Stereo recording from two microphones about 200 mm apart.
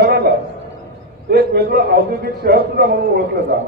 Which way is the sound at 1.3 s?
55° right (ahead or behind).